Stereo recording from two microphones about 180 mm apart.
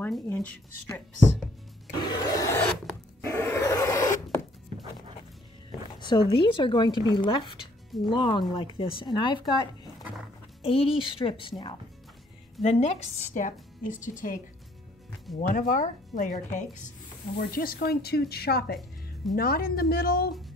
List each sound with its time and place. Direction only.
0.0 s speech: 10° left (ahead or behind)
2.0 s wood: 25° left (ahead or behind)
5.9 s a sound: 25° left (ahead or behind)
6.3 s speech: 25° left (ahead or behind)
10.6 s speech: 30° left (ahead or behind)
12.6 s a woman's voice: 40° left (ahead or behind)
15.5 s a woman's voice: 45° left (ahead or behind)